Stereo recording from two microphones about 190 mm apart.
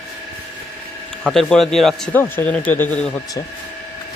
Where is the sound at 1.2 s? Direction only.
Centre (ahead or behind).